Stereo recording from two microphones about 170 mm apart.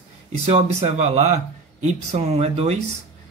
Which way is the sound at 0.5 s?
40° right (ahead or behind).